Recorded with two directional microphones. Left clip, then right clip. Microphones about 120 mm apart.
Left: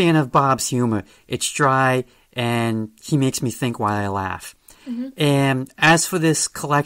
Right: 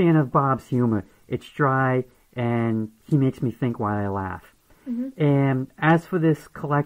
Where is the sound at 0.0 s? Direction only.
30° left (ahead or behind).